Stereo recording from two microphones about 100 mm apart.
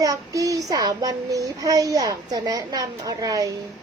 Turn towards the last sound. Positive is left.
turn(degrees=-35)  # may be behind; listen again after turning